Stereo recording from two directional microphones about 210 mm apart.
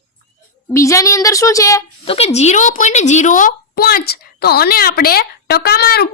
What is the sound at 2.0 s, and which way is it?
Speech, 30° left (ahead or behind).